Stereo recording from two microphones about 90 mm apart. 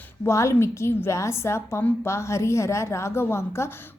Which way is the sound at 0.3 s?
30° left (ahead or behind).